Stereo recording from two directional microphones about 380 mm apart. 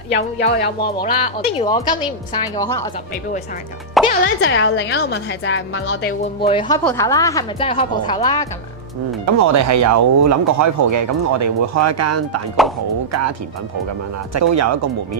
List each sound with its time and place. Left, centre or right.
0.1 s a woman's voice: left; by 2.9 s centre
4.0 s music: centre
4.4 s a woman's voice: left
6.4 s a woman's voice: centre
9.2 s speech: right
14.3 s speech: right